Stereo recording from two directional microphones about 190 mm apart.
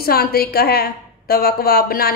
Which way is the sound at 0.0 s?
55° left (ahead or behind).